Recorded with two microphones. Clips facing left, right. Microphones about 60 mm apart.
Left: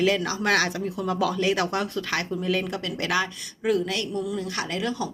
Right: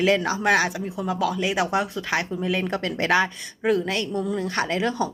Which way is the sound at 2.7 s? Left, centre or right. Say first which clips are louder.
Right 5 dB; right.